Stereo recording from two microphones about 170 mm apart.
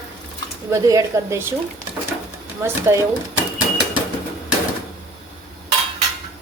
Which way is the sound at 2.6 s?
15° right (ahead or behind).